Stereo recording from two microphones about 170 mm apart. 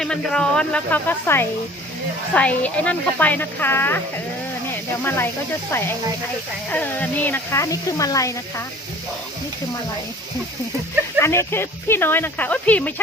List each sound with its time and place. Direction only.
0.0 s speech: 5° left (ahead or behind)
5.0 s speech: 15° left (ahead or behind)
6.7 s speech: 10° left (ahead or behind)
11.2 s speech: 15° left (ahead or behind)